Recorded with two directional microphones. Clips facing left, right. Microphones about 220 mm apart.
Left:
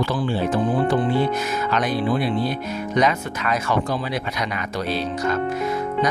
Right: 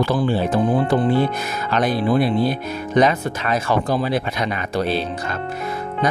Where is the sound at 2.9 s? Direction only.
30° right (ahead or behind).